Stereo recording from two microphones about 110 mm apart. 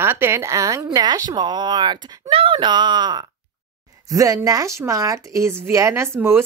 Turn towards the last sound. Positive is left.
turn(degrees=-25)  # may be behind; listen again after turning